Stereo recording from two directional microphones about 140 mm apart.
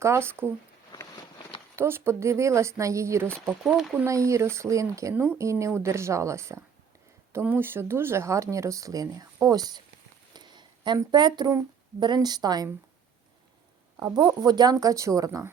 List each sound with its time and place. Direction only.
0.0 s speech: 20° right (ahead or behind)
1.1 s a sound: 30° left (ahead or behind)
1.7 s speech: 15° right (ahead or behind)
3.3 s speech: 5° left (ahead or behind)
3.9 s speech: 20° right (ahead or behind)
14.0 s speech: 30° right (ahead or behind)